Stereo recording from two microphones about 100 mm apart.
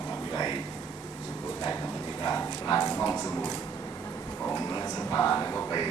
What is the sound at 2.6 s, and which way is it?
Speech, 35° left (ahead or behind).